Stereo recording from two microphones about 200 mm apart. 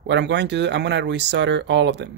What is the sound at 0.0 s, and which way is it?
Speech, 60° right (ahead or behind).